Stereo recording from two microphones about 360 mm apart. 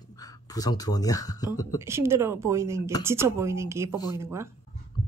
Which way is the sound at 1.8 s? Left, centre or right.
Centre.